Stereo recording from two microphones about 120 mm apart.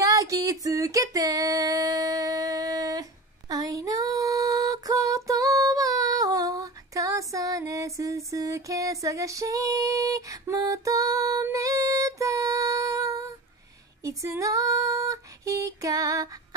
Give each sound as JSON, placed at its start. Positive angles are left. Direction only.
{"t": 0.0, "sound": "female singing", "side_deg": -30}
{"t": 14.3, "sound": "female singing", "side_deg": -25}